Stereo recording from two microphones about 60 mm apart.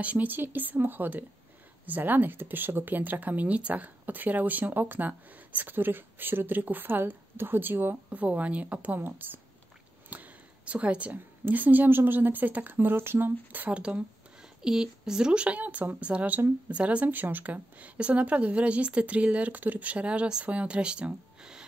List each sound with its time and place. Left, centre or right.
0.0 s speech: right
10.0 s a sound: right
11.1 s speech: right
13.7 s speech: centre
16.7 s speech: right